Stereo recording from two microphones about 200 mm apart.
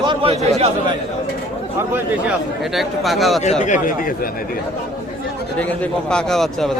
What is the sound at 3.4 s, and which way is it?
Speech, 35° left (ahead or behind).